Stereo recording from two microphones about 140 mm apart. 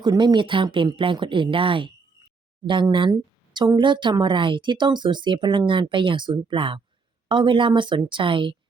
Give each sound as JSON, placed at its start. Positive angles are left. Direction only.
{"t": 0.0, "sound": "a woman's voice", "side_deg": -30}